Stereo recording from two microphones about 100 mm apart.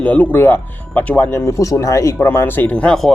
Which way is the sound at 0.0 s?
15° left (ahead or behind).